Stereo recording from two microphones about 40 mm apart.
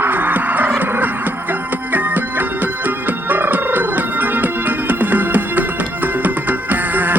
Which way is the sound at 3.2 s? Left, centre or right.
Right.